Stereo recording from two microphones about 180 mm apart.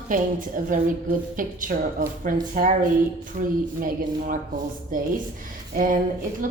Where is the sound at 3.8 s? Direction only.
50° right (ahead or behind).